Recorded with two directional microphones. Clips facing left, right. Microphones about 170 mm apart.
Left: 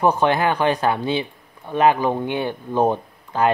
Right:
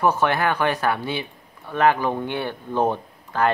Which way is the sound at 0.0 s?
20° left (ahead or behind).